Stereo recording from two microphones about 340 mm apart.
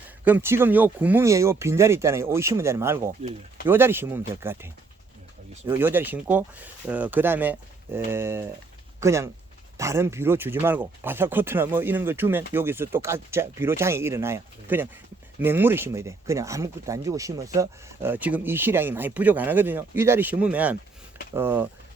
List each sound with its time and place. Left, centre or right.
0.3 s speech: centre
3.7 s speech: centre